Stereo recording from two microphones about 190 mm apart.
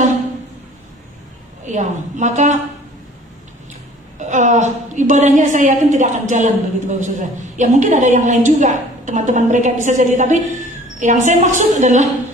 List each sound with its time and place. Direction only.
1.7 s a woman's voice: 40° right (ahead or behind)
4.2 s a woman's voice: 40° right (ahead or behind)